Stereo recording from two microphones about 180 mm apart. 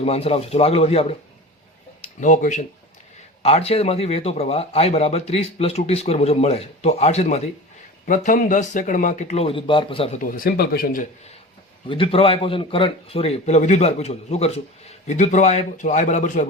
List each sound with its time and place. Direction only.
0.0 s speech: 35° left (ahead or behind)
2.2 s a man's voice: 45° left (ahead or behind)
10.2 s a man's voice: 50° left (ahead or behind)
11.9 s speech: 30° left (ahead or behind)